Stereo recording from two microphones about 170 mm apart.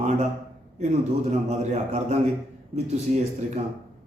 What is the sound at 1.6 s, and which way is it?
Speech, 45° right (ahead or behind).